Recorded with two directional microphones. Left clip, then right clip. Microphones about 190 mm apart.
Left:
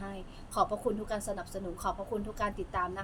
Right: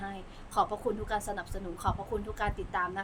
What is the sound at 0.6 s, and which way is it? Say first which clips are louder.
A woman's voice: right 1 dB; 15° right (ahead or behind).